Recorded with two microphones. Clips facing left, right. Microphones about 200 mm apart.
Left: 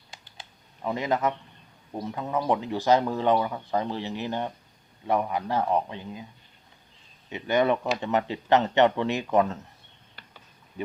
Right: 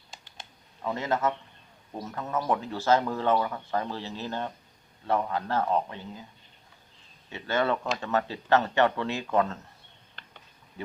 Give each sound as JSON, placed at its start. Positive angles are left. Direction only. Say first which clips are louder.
{"t": 0.8, "sound": "speech", "louder": "left 2 dB", "side_deg": 15}
{"t": 7.3, "sound": "speech", "louder": "left 4 dB", "side_deg": 15}